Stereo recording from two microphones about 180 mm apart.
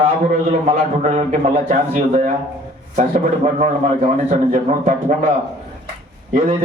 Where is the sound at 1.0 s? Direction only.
35° right (ahead or behind).